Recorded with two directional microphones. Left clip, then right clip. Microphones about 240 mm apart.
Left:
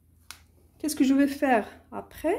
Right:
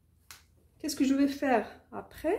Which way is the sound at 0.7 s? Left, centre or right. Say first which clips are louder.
Left 5 dB; left.